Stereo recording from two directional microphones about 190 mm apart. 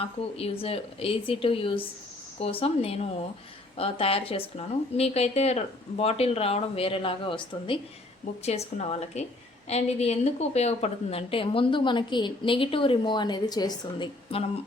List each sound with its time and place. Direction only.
0.0 s a woman's voice: 30° left (ahead or behind)